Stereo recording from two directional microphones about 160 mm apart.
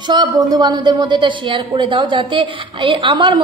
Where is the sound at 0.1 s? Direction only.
25° right (ahead or behind).